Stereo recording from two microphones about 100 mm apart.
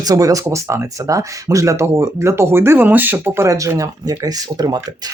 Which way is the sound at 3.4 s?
35° right (ahead or behind).